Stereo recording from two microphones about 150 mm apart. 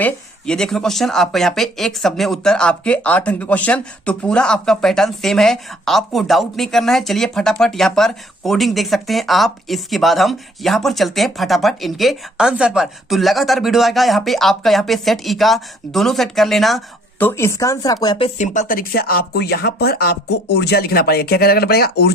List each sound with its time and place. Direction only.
0.0 s speech: 5° left (ahead or behind)
17.2 s speech: 15° left (ahead or behind)
18.3 s speech: 55° left (ahead or behind); by 22.1 s 90° left